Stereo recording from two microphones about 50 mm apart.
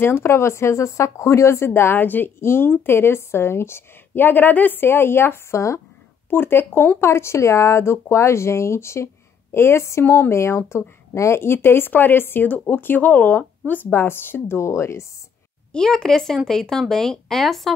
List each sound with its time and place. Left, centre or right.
0.0 s speech: left
2.4 s a woman's voice: left
7.0 s a woman's voice: left
12.4 s speech: left
13.9 s a woman's voice: left
14.6 s speech: left
15.7 s speech: centre